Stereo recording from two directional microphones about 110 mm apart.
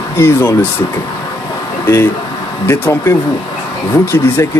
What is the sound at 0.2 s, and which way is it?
Speech, 20° left (ahead or behind).